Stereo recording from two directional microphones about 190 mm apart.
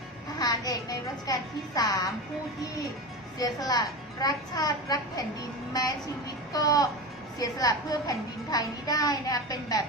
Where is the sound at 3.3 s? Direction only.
20° left (ahead or behind).